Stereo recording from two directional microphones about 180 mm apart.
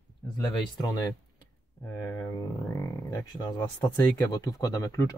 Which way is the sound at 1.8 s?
15° left (ahead or behind).